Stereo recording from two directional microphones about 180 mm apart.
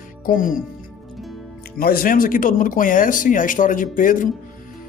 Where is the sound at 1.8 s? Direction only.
55° left (ahead or behind).